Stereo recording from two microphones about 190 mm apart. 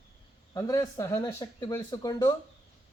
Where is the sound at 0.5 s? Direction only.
20° left (ahead or behind).